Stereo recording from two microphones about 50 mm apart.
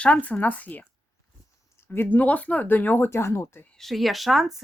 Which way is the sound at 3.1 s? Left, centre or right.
Left.